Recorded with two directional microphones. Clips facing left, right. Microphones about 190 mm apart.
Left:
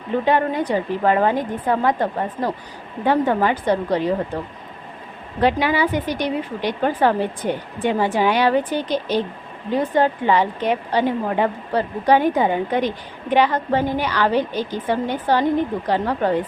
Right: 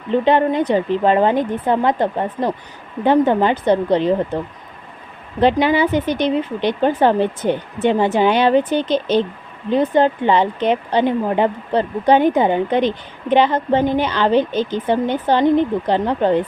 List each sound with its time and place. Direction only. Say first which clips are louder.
0.3 s speech: right 4 dB; 25° right (ahead or behind)
5.4 s speech: right 4 dB; 25° right (ahead or behind)